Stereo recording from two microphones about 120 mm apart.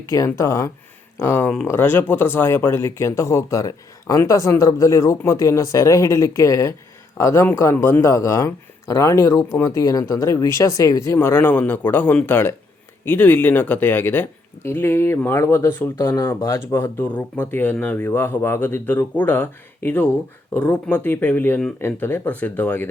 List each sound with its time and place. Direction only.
0.0 s speech: 30° left (ahead or behind); by 22.9 s 15° left (ahead or behind)